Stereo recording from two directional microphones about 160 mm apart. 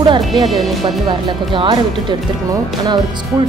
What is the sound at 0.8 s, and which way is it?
Music, 30° right (ahead or behind).